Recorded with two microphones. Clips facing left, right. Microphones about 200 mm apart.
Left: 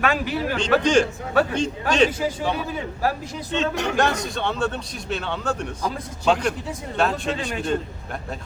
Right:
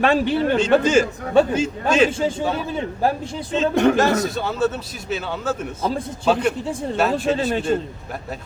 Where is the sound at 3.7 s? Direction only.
55° right (ahead or behind).